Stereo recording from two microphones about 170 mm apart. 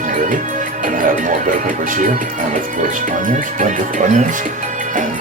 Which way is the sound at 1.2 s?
50° right (ahead or behind).